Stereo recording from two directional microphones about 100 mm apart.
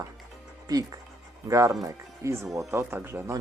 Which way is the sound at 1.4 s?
35° right (ahead or behind).